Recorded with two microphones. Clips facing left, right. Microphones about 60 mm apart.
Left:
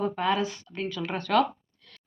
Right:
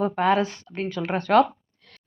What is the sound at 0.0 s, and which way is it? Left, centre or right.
Speech, right.